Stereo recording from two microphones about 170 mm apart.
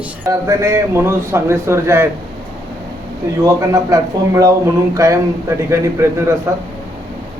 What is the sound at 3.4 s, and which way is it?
Speech, 20° right (ahead or behind).